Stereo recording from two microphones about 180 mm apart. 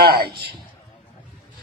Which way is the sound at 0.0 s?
60° right (ahead or behind).